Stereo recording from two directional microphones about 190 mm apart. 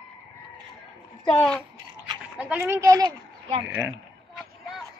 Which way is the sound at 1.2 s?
5° left (ahead or behind).